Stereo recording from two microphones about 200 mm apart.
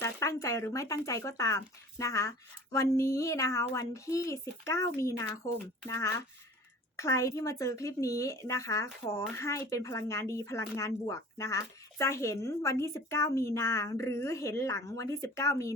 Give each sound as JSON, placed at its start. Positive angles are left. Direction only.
{"t": 0.0, "sound": "speech", "side_deg": 15}